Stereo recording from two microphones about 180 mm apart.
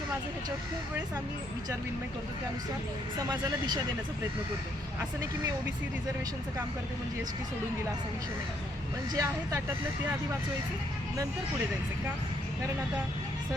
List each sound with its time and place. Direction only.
9.1 s speech: 15° right (ahead or behind)